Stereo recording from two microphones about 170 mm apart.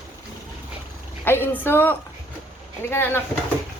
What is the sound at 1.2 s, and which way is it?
A woman's voice, 15° left (ahead or behind).